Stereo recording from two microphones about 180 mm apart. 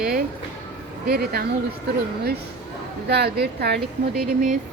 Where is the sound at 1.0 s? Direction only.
60° right (ahead or behind).